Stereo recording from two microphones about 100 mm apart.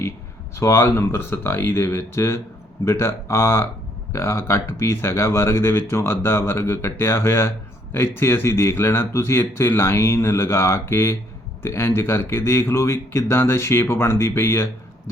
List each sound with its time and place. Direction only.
0.5 s speech: 30° left (ahead or behind)